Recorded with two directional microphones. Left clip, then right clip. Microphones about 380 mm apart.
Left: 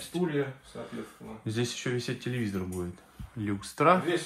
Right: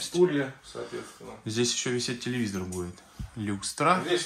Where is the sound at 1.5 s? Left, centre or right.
Centre.